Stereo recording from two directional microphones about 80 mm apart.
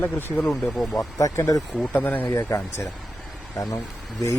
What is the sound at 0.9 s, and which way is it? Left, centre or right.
Speech, left.